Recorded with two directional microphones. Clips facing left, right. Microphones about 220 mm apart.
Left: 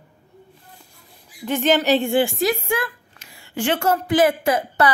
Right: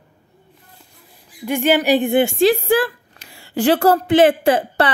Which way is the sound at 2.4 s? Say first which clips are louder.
Right 7 dB; 30° right (ahead or behind).